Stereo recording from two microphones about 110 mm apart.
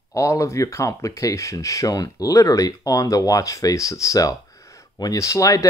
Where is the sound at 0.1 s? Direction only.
30° left (ahead or behind).